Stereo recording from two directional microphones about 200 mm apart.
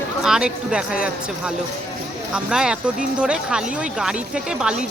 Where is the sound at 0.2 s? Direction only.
5° right (ahead or behind).